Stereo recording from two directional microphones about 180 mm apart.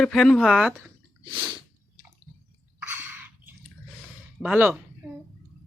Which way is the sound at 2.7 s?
10° right (ahead or behind).